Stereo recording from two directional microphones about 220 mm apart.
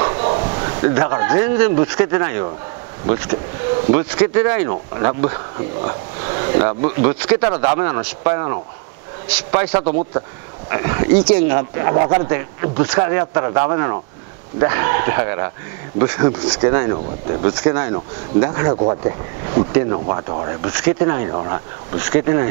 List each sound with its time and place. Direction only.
0.0 s speech: 25° right (ahead or behind)
5.8 s a sound: 25° right (ahead or behind)
6.8 s speech: 10° right (ahead or behind)
9.8 s a man's voice: 30° right (ahead or behind)
10.7 s speech: 15° right (ahead or behind)
11.5 s speech: 20° right (ahead or behind)
16.6 s speech: 20° right (ahead or behind)